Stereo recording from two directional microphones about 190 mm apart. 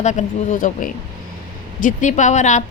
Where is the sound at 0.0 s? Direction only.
40° left (ahead or behind).